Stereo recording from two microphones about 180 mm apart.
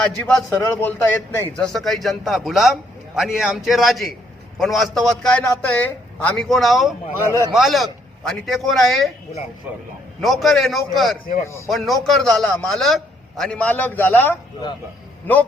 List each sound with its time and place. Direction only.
0.0 s a man's voice: 5° left (ahead or behind)
10.2 s a man's voice: centre (ahead or behind)
11.4 s speech: 15° left (ahead or behind)
11.7 s a man's voice: centre (ahead or behind)